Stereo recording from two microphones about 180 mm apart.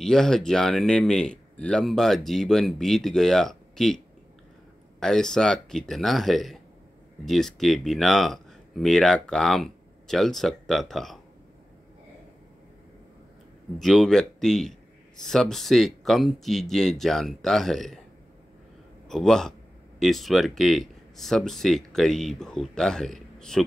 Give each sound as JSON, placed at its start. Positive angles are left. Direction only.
{"t": 0.0, "sound": "speech", "side_deg": 5}
{"t": 5.0, "sound": "speech", "side_deg": 5}
{"t": 13.7, "sound": "speech", "side_deg": 0}
{"t": 19.0, "sound": "a man's voice", "side_deg": 0}